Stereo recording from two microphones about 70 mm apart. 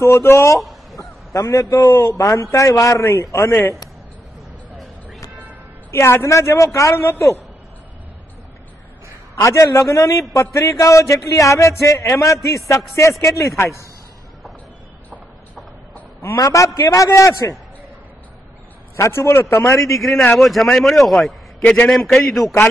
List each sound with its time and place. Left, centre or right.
0.0 s a man's voice: left
5.9 s a man's voice: left
9.3 s a man's voice: left
16.4 s a man's voice: left
18.9 s a man's voice: left
19.9 s speech: centre
21.6 s a man's voice: centre
21.9 s speech: centre